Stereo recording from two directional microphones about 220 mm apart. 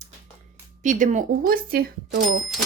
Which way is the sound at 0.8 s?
35° right (ahead or behind).